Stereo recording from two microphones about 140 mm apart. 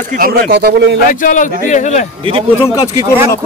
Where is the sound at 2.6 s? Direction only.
25° left (ahead or behind).